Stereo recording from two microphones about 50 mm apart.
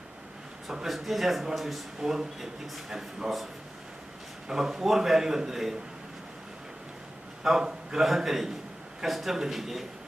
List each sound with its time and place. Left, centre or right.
0.7 s speech: centre
4.4 s a man's voice: centre
7.6 s a man's voice: centre
8.0 s speech: centre